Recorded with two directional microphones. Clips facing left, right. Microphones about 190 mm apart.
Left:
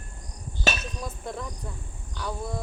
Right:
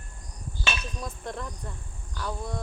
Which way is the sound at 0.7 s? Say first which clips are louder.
Left 5 dB; 40° left (ahead or behind).